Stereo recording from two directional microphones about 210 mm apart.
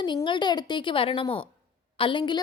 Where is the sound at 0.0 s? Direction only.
20° left (ahead or behind).